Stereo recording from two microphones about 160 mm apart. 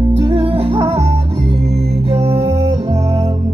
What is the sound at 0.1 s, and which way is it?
Music, 35° right (ahead or behind).